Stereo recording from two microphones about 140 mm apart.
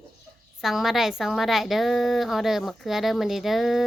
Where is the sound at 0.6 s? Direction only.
Centre (ahead or behind).